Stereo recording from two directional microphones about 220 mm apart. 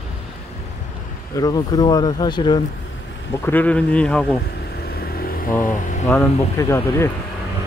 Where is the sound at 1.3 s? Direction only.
15° left (ahead or behind).